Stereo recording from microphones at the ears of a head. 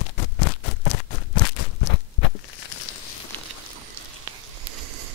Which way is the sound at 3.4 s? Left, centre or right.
Right.